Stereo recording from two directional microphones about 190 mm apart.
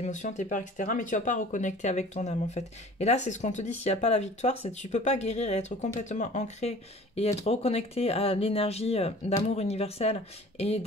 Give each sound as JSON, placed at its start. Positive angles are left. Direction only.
{"t": 0.0, "sound": "speech", "side_deg": 40}